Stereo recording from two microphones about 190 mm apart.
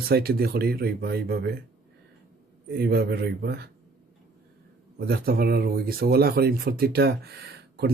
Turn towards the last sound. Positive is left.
turn(degrees=-60)  # may be behind; listen again after turning